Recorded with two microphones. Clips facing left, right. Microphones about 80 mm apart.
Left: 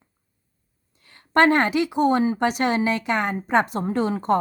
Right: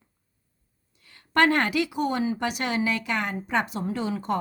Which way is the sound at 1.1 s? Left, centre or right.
Left.